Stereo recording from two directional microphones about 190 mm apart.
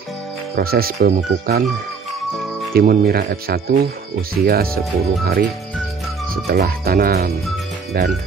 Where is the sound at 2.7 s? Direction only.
50° right (ahead or behind).